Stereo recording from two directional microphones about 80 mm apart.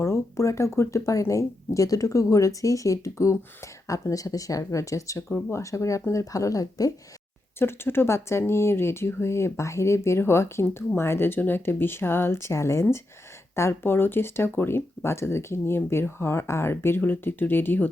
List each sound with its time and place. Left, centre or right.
0.0 s speech: left
7.6 s speech: left